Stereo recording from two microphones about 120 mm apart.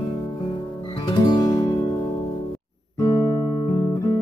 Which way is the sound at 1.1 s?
40° left (ahead or behind).